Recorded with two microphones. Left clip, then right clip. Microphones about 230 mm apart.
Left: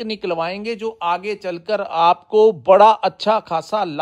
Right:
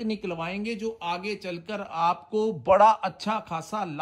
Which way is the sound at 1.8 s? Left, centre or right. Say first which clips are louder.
Left 10 dB; left.